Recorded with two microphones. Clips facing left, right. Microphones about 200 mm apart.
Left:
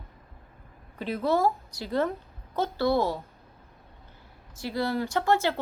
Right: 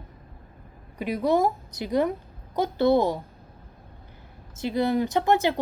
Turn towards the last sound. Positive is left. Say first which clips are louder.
# right 3 dB
turn(degrees=-20)  # may be behind; listen again after turning